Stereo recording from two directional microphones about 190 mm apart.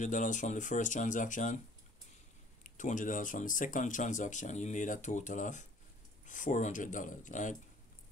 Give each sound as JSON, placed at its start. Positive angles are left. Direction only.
{"t": 0.0, "sound": "speech", "side_deg": 40}
{"t": 2.6, "sound": "speech", "side_deg": 45}